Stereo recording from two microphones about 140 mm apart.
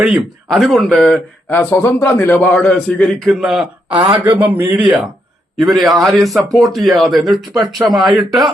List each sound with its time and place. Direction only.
0.0 s speech: 5° right (ahead or behind)
1.5 s a man's voice: 15° left (ahead or behind); by 3.7 s centre (ahead or behind)
3.9 s speech: 45° right (ahead or behind)
4.3 s speech: 10° right (ahead or behind)
5.5 s speech: centre (ahead or behind)